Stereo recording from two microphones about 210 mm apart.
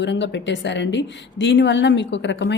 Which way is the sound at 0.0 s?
55° left (ahead or behind).